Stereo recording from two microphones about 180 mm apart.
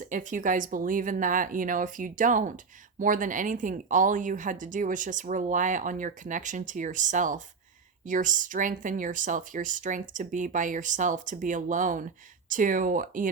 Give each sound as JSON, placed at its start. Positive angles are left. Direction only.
{"t": 0.1, "sound": "speech", "side_deg": -45}